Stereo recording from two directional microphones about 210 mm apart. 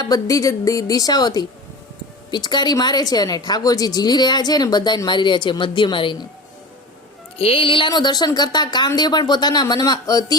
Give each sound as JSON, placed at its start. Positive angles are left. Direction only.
{"t": 0.0, "sound": "a woman's voice", "side_deg": 15}
{"t": 7.3, "sound": "a woman's voice", "side_deg": 25}